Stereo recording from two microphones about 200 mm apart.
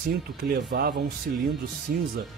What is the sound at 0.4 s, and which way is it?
Speech, 50° right (ahead or behind).